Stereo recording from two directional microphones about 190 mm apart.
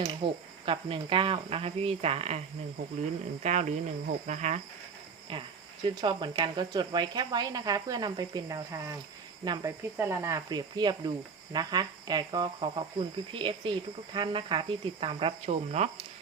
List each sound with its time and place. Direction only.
0.1 s speech: 25° right (ahead or behind)
3.4 s speech: 35° right (ahead or behind)
5.3 s speech: 25° right (ahead or behind)